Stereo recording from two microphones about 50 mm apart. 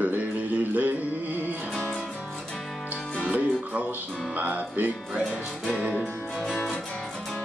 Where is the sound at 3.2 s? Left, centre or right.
Right.